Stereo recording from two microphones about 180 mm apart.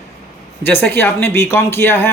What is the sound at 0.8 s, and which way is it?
A woman's voice, 15° left (ahead or behind).